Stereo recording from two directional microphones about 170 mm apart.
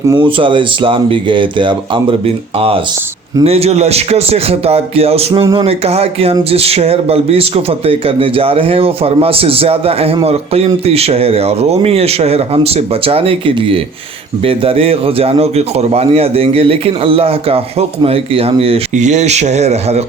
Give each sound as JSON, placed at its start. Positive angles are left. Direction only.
{"t": 0.1, "sound": "speech", "side_deg": -30}